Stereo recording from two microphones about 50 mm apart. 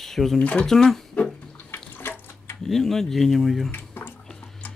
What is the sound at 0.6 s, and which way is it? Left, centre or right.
Speech, centre.